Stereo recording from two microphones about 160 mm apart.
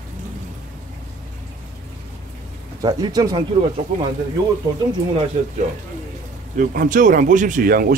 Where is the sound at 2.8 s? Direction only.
25° right (ahead or behind).